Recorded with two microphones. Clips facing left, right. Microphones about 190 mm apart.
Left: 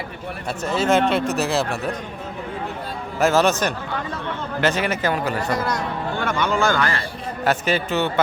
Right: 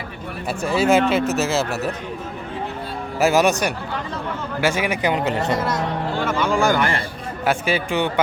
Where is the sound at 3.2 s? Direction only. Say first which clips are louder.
Right 1 dB; 10° right (ahead or behind).